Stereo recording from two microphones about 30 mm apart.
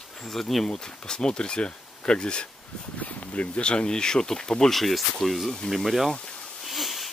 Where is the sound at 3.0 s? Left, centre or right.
Left.